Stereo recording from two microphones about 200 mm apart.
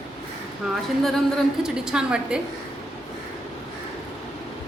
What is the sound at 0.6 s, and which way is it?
A woman's voice, centre (ahead or behind).